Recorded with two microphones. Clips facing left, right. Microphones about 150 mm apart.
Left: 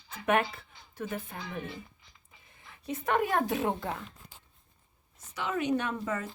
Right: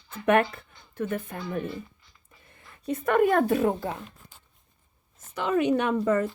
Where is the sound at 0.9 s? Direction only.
60° right (ahead or behind).